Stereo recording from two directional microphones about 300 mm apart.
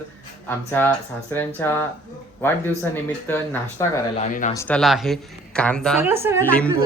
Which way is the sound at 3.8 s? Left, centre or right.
Centre.